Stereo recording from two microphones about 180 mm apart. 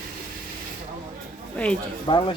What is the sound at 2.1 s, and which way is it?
Speech, 30° left (ahead or behind).